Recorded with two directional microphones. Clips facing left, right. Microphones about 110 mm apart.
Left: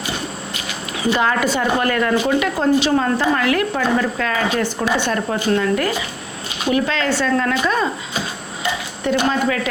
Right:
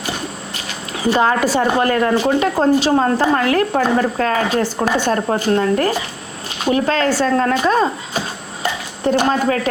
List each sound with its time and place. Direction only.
0.9 s a woman's voice: 35° right (ahead or behind)